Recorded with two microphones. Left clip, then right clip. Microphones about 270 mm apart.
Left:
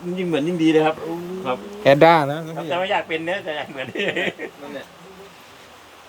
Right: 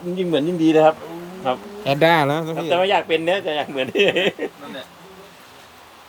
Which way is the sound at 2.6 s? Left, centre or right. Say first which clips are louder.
Right 4 dB; right.